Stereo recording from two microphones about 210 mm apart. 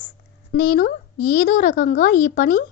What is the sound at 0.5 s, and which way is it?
Speech, 45° left (ahead or behind).